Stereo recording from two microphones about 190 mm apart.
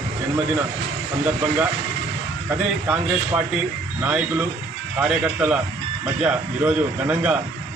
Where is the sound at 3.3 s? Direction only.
10° right (ahead or behind).